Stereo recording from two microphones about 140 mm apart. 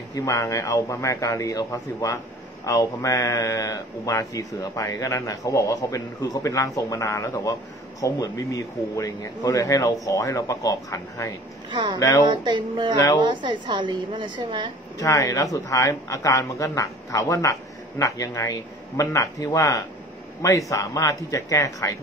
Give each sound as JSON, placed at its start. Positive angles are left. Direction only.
{"t": 0.1, "sound": "speech", "side_deg": 25}
{"t": 11.7, "sound": "a woman's voice", "side_deg": -35}
{"t": 12.0, "sound": "speech", "side_deg": 25}
{"t": 12.3, "sound": "a woman's voice", "side_deg": -35}
{"t": 12.9, "sound": "speech", "side_deg": 25}
{"t": 13.2, "sound": "a woman's voice", "side_deg": -35}
{"t": 15.0, "sound": "speech", "side_deg": 25}